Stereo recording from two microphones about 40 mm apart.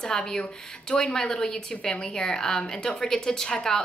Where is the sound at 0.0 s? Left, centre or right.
Centre.